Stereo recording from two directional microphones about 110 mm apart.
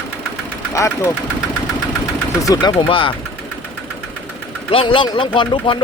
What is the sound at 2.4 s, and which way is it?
Speech, 35° left (ahead or behind).